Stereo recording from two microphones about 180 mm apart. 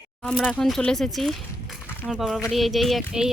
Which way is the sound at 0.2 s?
5° left (ahead or behind).